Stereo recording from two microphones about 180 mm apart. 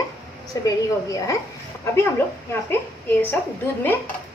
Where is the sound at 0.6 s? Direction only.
20° left (ahead or behind).